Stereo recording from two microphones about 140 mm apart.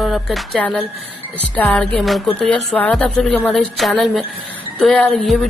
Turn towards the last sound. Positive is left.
turn(degrees=5)  # may be behind; listen again after turning